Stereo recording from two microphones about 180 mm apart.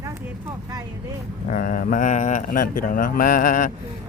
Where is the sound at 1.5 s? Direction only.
50° left (ahead or behind).